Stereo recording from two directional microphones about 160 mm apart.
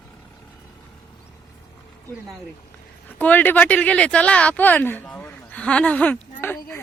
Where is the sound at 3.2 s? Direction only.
10° left (ahead or behind).